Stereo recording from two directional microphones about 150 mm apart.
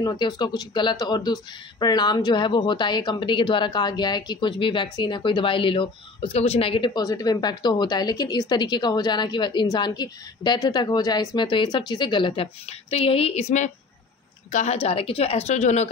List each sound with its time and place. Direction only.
0.0 s a woman's voice: 30° left (ahead or behind); by 15.9 s 50° left (ahead or behind)